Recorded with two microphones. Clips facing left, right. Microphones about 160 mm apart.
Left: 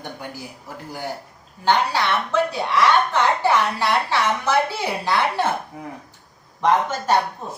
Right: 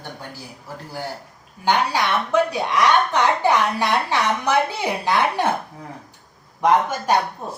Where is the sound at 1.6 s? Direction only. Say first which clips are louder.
Even; 15° right (ahead or behind).